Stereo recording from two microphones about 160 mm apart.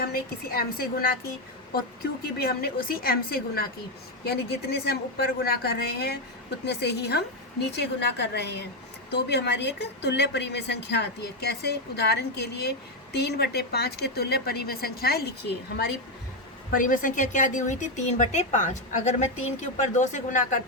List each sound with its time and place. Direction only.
0.0 s a woman's voice: 70° left (ahead or behind)
2.4 s a woman's voice: 75° left (ahead or behind)
4.2 s a woman's voice: 90° left
16.7 s speech: 60° left (ahead or behind)